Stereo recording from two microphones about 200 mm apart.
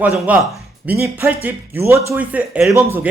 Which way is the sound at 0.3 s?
10° right (ahead or behind).